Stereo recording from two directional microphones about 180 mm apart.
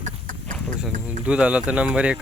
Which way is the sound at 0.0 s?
45° right (ahead or behind).